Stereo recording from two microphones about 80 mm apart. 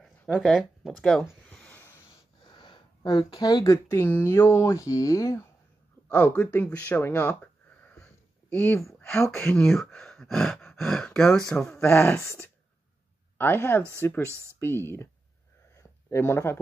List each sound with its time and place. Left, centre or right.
0.4 s speech: centre
2.5 s a sound: left
3.3 s speech: left
3.7 s speech: left
6.0 s speech: left
7.8 s sniff: left
8.5 s speech: centre
8.9 s a sound: centre
9.2 s speech: left
9.6 s speech: centre
12.2 s speech: left
15.7 s a sound: left